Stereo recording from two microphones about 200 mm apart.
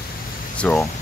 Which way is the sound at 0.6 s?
5° left (ahead or behind).